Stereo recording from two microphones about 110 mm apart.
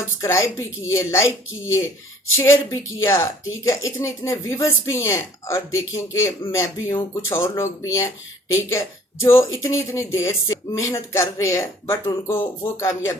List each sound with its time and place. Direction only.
0.2 s a woman's voice: 25° left (ahead or behind)
2.3 s a woman's voice: 25° left (ahead or behind)
9.2 s a woman's voice: 25° left (ahead or behind)